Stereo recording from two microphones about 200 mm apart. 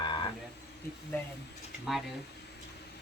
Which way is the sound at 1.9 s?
Centre (ahead or behind).